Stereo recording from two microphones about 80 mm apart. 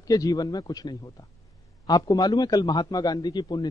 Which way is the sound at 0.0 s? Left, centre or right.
Left.